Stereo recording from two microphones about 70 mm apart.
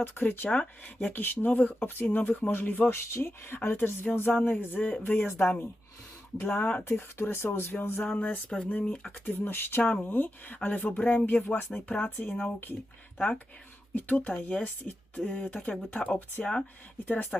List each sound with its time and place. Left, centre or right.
0.0 s speech: left
0.4 s speech: centre
3.1 s speech: left; by 9.2 s centre
9.2 s speech: left
12.1 s speech: left
13.1 s speech: centre